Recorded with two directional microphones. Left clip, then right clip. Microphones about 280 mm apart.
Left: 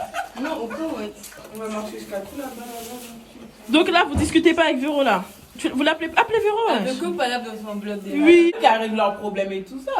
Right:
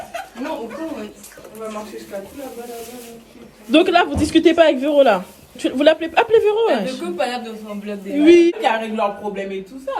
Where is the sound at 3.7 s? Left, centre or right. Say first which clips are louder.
Right 3 dB; centre.